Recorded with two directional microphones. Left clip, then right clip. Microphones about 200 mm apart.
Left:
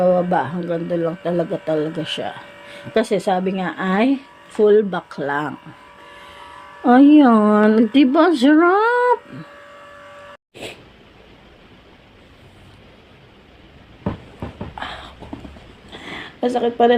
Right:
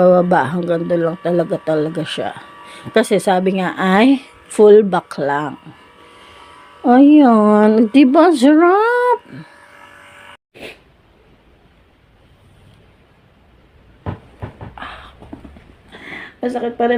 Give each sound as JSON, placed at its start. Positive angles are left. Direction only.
{"t": 0.0, "sound": "speech", "side_deg": -35}
{"t": 6.1, "sound": "speech", "side_deg": -5}
{"t": 10.5, "sound": "vehicle", "side_deg": -5}
{"t": 14.8, "sound": "a sound", "side_deg": -10}